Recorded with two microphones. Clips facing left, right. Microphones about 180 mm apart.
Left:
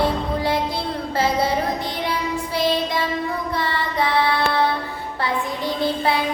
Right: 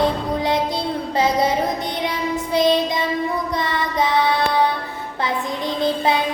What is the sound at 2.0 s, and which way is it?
Child singing, 20° right (ahead or behind).